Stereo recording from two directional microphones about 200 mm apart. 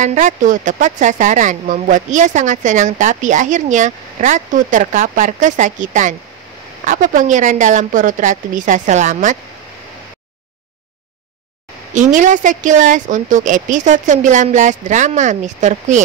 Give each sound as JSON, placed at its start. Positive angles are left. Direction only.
{"t": 0.0, "sound": "speech", "side_deg": -40}
{"t": 11.9, "sound": "speech", "side_deg": -40}